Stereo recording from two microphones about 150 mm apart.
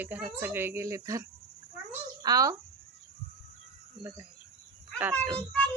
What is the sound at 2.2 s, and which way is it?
Speech, 25° right (ahead or behind).